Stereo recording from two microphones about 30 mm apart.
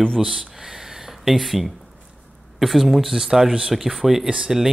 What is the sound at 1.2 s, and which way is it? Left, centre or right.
Speech, centre.